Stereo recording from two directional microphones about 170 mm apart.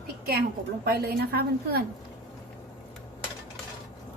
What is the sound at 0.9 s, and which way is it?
Speech, 65° right (ahead or behind).